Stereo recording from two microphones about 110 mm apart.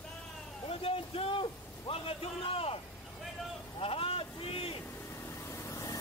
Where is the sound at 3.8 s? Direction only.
60° left (ahead or behind).